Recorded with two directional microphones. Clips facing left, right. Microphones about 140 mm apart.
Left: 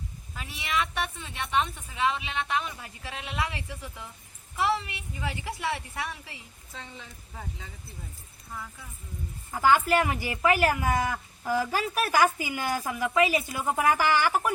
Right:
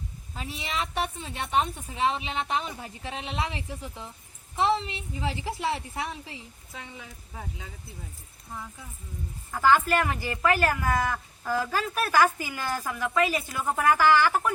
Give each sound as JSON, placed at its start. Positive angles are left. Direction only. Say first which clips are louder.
{"t": 0.3, "sound": "a woman's voice", "louder": "left 2 dB", "side_deg": -30}
{"t": 6.7, "sound": "speech", "louder": "right 1 dB", "side_deg": -5}
{"t": 9.5, "sound": "speech", "louder": "even", "side_deg": 15}